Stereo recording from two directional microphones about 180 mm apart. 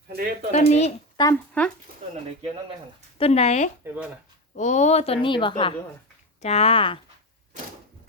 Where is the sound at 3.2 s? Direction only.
35° left (ahead or behind).